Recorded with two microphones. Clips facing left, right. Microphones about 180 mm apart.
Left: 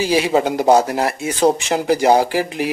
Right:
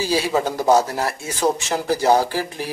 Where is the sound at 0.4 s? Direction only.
20° left (ahead or behind).